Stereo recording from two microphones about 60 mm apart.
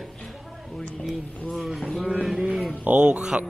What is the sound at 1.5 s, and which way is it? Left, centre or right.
Speech, centre.